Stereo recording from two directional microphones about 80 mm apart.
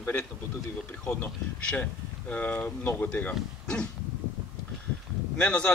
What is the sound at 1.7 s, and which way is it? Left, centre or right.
Speech, centre.